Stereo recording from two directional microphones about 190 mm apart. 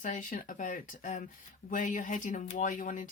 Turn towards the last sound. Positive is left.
turn(degrees=45)  # may be behind; listen again after turning